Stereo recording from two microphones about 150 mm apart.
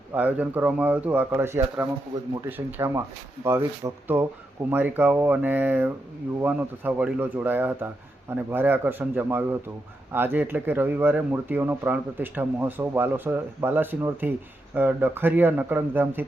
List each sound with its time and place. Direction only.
0.1 s speech: 10° right (ahead or behind)